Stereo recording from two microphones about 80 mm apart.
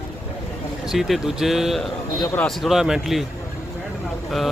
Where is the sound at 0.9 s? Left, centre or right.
Centre.